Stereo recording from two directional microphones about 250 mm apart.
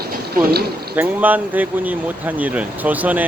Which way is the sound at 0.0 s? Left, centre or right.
Right.